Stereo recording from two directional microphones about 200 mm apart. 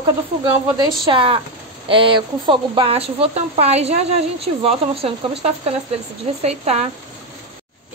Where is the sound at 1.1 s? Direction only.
25° right (ahead or behind).